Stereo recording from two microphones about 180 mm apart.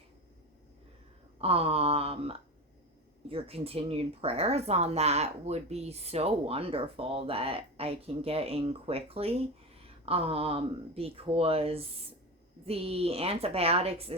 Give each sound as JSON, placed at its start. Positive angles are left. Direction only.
{"t": 1.4, "sound": "speech", "side_deg": -35}